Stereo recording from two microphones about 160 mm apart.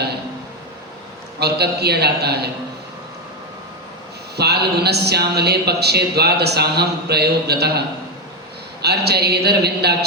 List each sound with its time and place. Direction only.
1.4 s a man's voice: 90° right
4.4 s a man's voice: 90° right